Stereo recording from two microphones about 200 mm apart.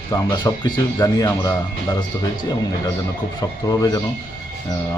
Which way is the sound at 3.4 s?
15° left (ahead or behind).